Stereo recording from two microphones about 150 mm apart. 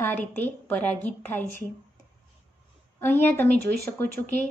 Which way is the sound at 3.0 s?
15° left (ahead or behind).